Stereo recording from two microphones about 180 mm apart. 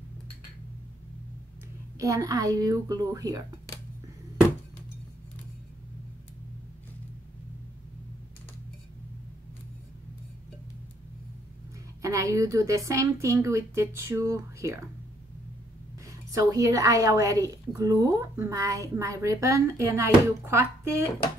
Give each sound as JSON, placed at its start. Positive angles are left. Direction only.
{"t": 2.0, "sound": "a woman's voice", "side_deg": -20}
{"t": 12.0, "sound": "a woman's voice", "side_deg": -15}
{"t": 16.3, "sound": "a woman's voice", "side_deg": -20}